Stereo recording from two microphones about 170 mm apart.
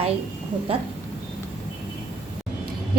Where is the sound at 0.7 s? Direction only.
35° right (ahead or behind).